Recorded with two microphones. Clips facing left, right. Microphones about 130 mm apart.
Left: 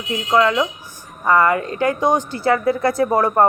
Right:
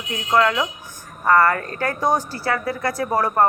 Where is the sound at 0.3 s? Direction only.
15° left (ahead or behind).